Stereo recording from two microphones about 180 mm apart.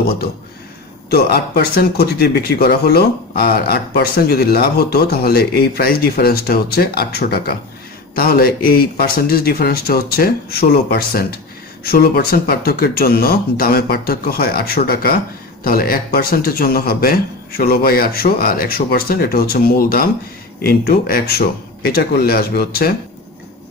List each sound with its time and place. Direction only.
1.1 s speech: 60° left (ahead or behind)